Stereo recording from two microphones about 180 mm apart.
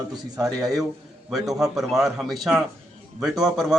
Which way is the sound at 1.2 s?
Centre (ahead or behind).